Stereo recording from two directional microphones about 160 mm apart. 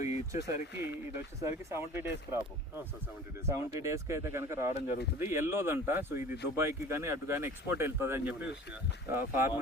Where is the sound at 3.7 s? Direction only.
20° right (ahead or behind).